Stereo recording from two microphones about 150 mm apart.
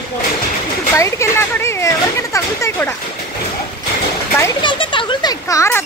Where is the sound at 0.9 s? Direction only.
20° left (ahead or behind).